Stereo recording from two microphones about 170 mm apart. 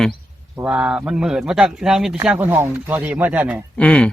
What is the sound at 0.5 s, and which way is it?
Speech, 5° right (ahead or behind).